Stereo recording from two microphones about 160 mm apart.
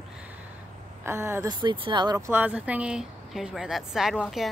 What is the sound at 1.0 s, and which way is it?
Speech, 15° right (ahead or behind).